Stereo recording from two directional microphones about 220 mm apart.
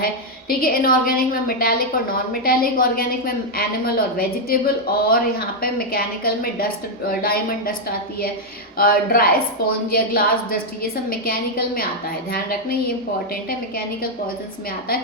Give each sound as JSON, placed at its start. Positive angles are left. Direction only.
{"t": 0.0, "sound": "a woman's voice", "side_deg": 40}
{"t": 8.8, "sound": "a woman's voice", "side_deg": 40}